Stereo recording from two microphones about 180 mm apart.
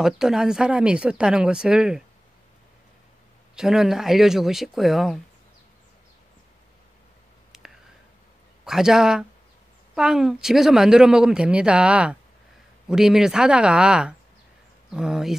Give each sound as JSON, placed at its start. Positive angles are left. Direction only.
{"t": 0.0, "sound": "speech", "side_deg": -5}
{"t": 3.5, "sound": "speech", "side_deg": -5}
{"t": 7.5, "sound": "a sound", "side_deg": -5}
{"t": 8.6, "sound": "speech", "side_deg": -5}